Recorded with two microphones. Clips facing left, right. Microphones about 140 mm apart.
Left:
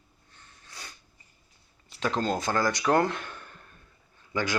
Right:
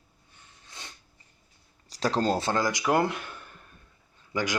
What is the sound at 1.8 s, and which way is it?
Speech, 35° right (ahead or behind).